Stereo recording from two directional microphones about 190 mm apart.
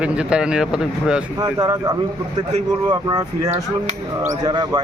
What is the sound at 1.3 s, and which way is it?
Speech, 20° right (ahead or behind).